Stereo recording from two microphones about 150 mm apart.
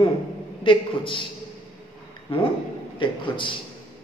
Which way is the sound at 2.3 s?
40° left (ahead or behind).